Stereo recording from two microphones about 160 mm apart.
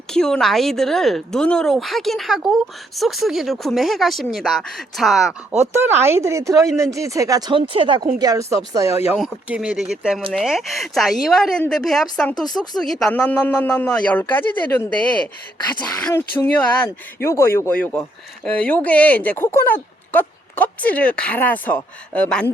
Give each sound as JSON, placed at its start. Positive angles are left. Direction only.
{"t": 0.1, "sound": "a woman's voice", "side_deg": 5}
{"t": 5.7, "sound": "a woman's voice", "side_deg": -15}
{"t": 8.2, "sound": "speech", "side_deg": -20}
{"t": 9.1, "sound": "a woman's voice", "side_deg": 0}
{"t": 16.0, "sound": "speech", "side_deg": 10}